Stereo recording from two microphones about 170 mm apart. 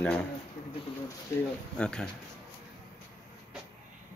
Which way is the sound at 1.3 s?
15° left (ahead or behind).